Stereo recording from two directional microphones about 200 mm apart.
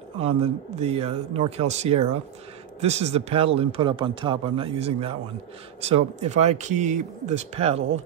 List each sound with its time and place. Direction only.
0.2 s speech: 30° right (ahead or behind)